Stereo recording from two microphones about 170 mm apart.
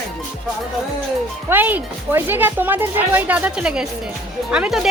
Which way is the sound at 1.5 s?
10° right (ahead or behind).